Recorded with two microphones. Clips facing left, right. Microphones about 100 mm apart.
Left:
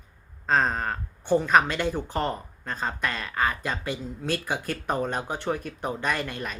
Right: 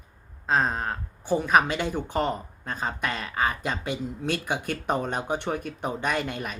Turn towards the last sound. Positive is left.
turn(degrees=-15)  # may be behind; listen again after turning